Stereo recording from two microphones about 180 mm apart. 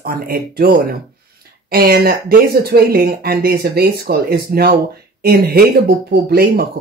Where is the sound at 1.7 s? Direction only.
55° right (ahead or behind).